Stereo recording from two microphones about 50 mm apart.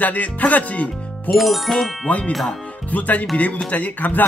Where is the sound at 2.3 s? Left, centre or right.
Centre.